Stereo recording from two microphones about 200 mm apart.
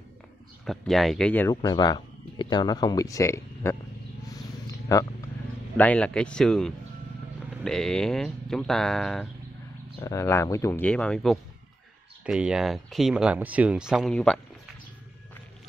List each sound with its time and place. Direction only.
0.7 s speech: centre (ahead or behind)
1.6 s speech: 20° left (ahead or behind)
4.9 s speech: 15° left (ahead or behind)
9.9 s speech: 15° left (ahead or behind)